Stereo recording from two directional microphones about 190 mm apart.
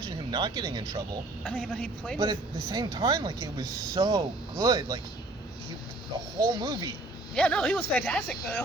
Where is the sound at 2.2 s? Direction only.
20° right (ahead or behind).